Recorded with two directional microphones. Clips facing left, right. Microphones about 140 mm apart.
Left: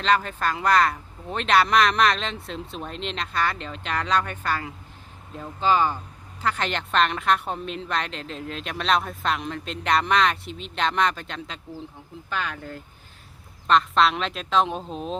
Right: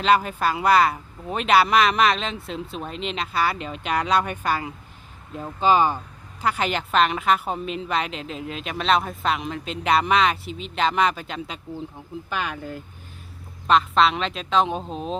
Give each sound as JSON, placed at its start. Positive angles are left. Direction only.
{"t": 0.0, "sound": "a woman's voice", "side_deg": -10}
{"t": 13.7, "sound": "a woman's voice", "side_deg": 0}